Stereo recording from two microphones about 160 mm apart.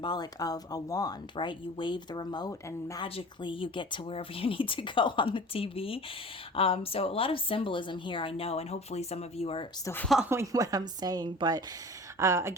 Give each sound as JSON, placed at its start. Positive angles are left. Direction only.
{"t": 0.0, "sound": "speech", "side_deg": 25}
{"t": 3.2, "sound": "speech", "side_deg": 35}
{"t": 9.8, "sound": "a woman's voice", "side_deg": 15}
{"t": 10.2, "sound": "speech", "side_deg": -20}